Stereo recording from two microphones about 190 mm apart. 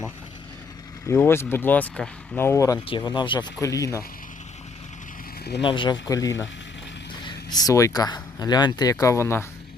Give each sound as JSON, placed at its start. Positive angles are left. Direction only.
{"t": 1.0, "sound": "speech", "side_deg": 10}
{"t": 5.6, "sound": "speech", "side_deg": 25}